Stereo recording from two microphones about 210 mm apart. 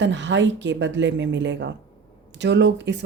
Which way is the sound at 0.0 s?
60° right (ahead or behind).